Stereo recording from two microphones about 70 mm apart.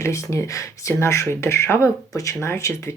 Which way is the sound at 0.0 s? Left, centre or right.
Left.